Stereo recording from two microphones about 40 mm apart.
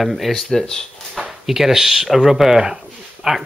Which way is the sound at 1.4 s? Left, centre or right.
Centre.